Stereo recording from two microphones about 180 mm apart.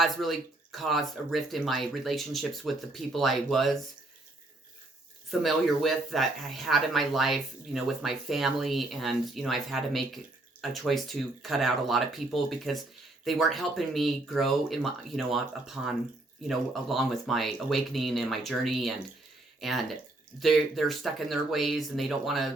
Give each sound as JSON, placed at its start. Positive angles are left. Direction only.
{"t": 0.0, "sound": "speech", "side_deg": 0}
{"t": 5.3, "sound": "speech", "side_deg": 0}